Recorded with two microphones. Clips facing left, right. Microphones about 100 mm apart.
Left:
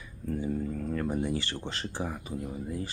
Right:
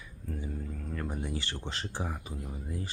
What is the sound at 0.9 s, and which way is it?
Speech, centre (ahead or behind).